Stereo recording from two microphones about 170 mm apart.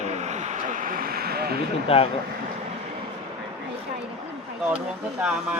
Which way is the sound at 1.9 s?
35° left (ahead or behind).